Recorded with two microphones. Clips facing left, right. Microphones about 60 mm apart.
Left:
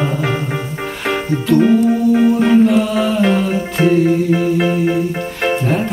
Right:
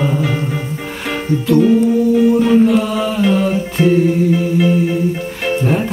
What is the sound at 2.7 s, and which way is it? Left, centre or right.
Mantra, centre.